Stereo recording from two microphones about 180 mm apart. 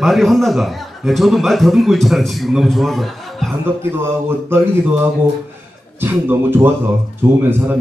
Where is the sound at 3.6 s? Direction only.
10° right (ahead or behind).